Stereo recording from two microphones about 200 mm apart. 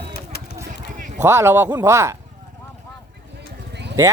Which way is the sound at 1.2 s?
10° right (ahead or behind).